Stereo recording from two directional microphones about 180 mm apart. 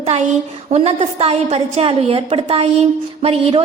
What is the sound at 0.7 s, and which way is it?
A woman's voice, 35° right (ahead or behind).